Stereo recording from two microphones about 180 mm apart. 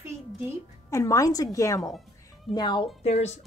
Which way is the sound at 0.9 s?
15° left (ahead or behind).